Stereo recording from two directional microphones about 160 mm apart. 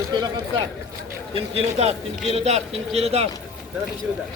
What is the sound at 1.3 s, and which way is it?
Speech, 40° right (ahead or behind).